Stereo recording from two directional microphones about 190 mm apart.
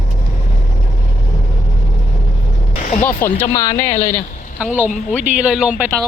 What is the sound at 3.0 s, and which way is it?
Speech, 10° left (ahead or behind).